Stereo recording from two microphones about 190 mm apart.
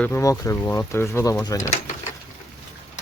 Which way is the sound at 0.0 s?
15° left (ahead or behind).